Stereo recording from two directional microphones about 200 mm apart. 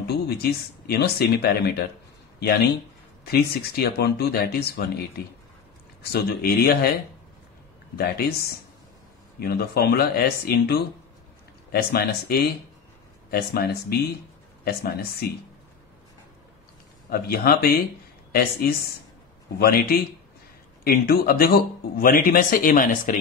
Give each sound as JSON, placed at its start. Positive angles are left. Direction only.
{"t": 0.0, "sound": "speech", "side_deg": 50}
{"t": 3.3, "sound": "speech", "side_deg": 50}
{"t": 6.1, "sound": "speech", "side_deg": 50}
{"t": 7.9, "sound": "speech", "side_deg": 50}
{"t": 17.1, "sound": "speech", "side_deg": 50}